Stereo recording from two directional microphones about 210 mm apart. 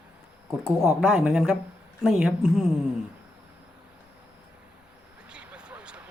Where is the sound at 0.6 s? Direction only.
10° right (ahead or behind).